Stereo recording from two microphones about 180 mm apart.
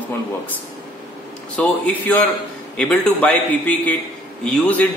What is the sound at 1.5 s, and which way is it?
A man's voice, 10° left (ahead or behind).